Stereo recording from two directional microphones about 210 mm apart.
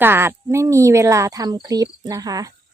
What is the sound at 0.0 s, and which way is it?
Speech, 10° right (ahead or behind).